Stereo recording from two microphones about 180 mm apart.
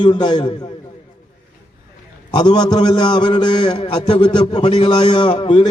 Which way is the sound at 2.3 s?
25° left (ahead or behind).